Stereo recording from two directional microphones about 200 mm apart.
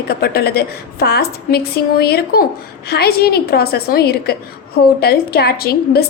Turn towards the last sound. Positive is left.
turn(degrees=50)  # may be behind; listen again after turning